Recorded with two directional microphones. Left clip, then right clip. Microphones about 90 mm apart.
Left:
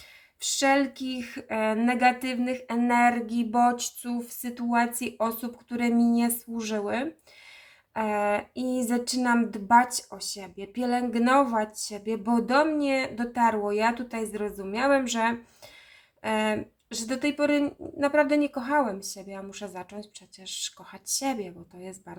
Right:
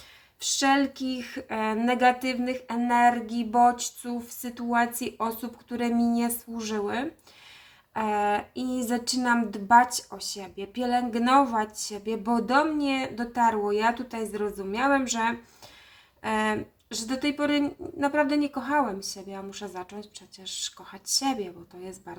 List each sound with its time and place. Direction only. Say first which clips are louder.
0.6 s speech: even; 20° left (ahead or behind)